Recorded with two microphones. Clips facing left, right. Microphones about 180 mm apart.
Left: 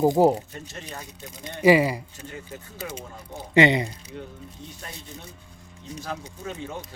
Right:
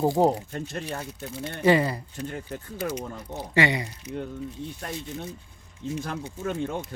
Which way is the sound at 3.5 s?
20° left (ahead or behind).